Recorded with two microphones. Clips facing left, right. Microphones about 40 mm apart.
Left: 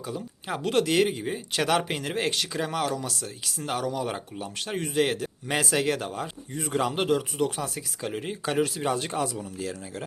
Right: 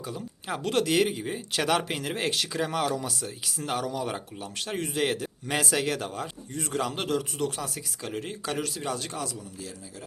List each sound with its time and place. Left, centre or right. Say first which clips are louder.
0.0 s speech: left 2 dB; centre; by 9.3 s left
9.3 s speech: left 6 dB; left